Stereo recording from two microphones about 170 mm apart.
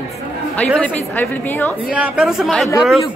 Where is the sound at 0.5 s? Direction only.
10° left (ahead or behind).